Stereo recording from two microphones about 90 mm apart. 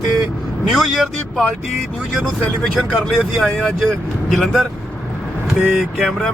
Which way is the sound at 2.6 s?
5° left (ahead or behind).